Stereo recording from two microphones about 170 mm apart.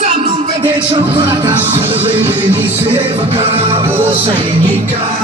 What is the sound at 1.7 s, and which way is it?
Music, 30° right (ahead or behind).